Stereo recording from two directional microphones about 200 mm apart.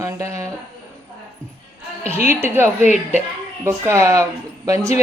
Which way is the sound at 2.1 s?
10° right (ahead or behind).